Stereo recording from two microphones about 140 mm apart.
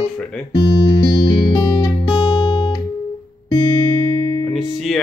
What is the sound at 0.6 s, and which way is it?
Music, 25° left (ahead or behind).